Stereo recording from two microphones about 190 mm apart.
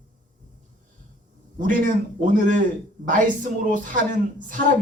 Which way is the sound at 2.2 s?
40° right (ahead or behind).